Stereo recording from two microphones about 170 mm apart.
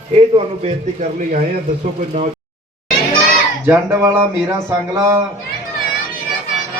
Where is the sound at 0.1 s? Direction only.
35° right (ahead or behind).